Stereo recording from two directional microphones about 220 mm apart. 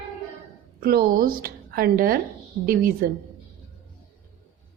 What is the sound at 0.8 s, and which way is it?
A woman's voice, 45° right (ahead or behind).